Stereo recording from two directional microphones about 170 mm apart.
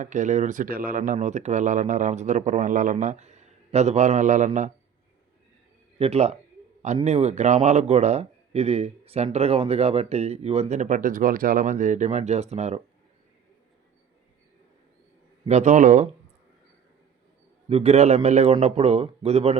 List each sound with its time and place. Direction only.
0.0 s speech: 45° right (ahead or behind)
6.0 s speech: 40° right (ahead or behind)
15.4 s speech: 45° right (ahead or behind)
17.7 s speech: 35° right (ahead or behind)